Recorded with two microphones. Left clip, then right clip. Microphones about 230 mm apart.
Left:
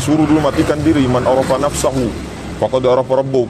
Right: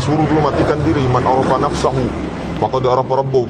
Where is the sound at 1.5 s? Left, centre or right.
Left.